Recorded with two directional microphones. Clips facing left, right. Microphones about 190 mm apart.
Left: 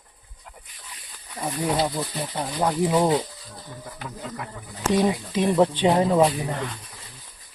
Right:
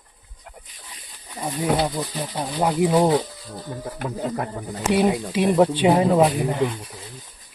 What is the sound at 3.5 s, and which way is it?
Speech, 55° right (ahead or behind).